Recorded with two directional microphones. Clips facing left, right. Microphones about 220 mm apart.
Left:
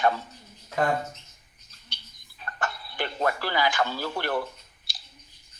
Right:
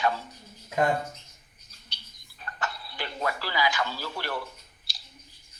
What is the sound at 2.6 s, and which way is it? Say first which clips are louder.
Speech: left 4 dB; 50° left (ahead or behind).